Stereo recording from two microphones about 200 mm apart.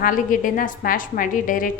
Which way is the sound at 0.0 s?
40° left (ahead or behind).